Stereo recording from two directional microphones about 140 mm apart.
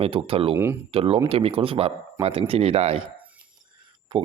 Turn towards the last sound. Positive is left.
turn(degrees=-30)  # may be behind; listen again after turning